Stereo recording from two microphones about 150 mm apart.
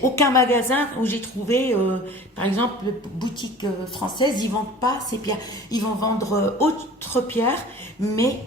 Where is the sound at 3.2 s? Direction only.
30° left (ahead or behind).